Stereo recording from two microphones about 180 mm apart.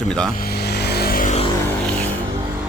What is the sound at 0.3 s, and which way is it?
Vehicle, 60° left (ahead or behind).